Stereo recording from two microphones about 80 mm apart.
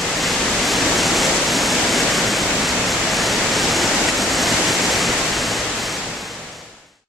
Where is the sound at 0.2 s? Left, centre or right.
Centre.